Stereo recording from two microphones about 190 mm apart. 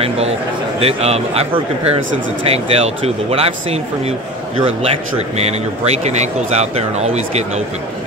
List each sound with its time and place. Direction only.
0.7 s speech: 30° right (ahead or behind)